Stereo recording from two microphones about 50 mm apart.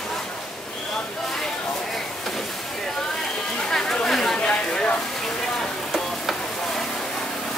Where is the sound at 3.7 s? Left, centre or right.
Centre.